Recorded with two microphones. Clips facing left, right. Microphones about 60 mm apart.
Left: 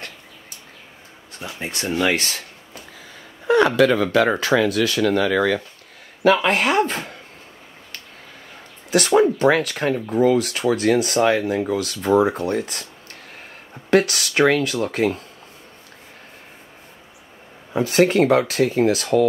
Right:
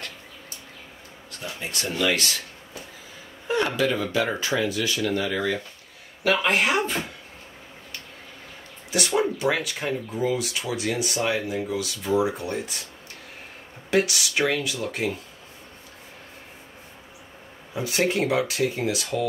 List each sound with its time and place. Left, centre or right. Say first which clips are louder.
1.3 s speech: left 3 dB; left
3.4 s speech: left 8 dB; left
6.2 s speech: left 5 dB; left
8.9 s speech: left 8 dB; left
13.8 s speech: left 5 dB; left
17.7 s speech: left 8 dB; left